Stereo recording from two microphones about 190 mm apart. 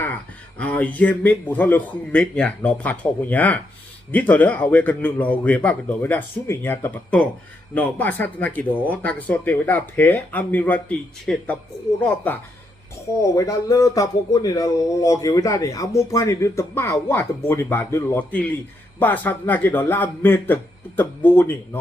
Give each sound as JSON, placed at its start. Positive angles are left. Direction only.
{"t": 0.6, "sound": "a man's voice", "side_deg": 5}